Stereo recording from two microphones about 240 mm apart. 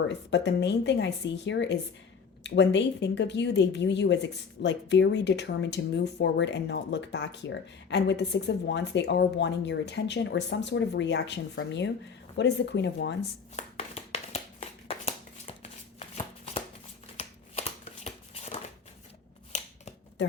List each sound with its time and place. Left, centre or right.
0.1 s speech: left
13.6 s a sound: left
17.2 s shuffling cards: left